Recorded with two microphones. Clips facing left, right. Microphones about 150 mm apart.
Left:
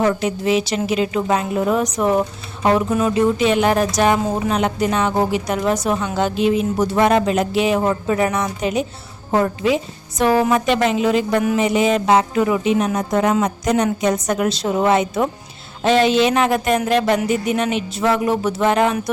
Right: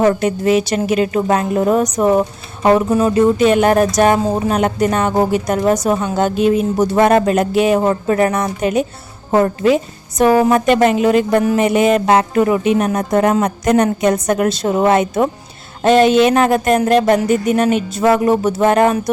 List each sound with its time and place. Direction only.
0.0 s speech: 50° right (ahead or behind)